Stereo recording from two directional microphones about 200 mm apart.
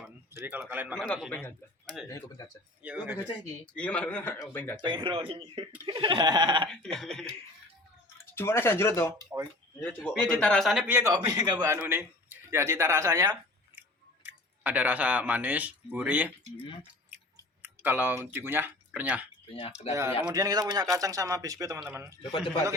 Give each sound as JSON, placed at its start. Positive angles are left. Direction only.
{"t": 0.4, "sound": "a man's voice", "side_deg": -10}
{"t": 0.9, "sound": "a man's voice", "side_deg": 5}
{"t": 2.8, "sound": "a man's voice", "side_deg": -5}
{"t": 3.8, "sound": "a man's voice", "side_deg": 5}
{"t": 4.8, "sound": "a sound", "side_deg": -25}
{"t": 6.7, "sound": "a man's voice", "side_deg": 5}
{"t": 17.6, "sound": "speech", "side_deg": -10}
{"t": 19.5, "sound": "speech", "side_deg": 25}
{"t": 19.9, "sound": "a man's voice", "side_deg": -15}
{"t": 22.2, "sound": "speech", "side_deg": 25}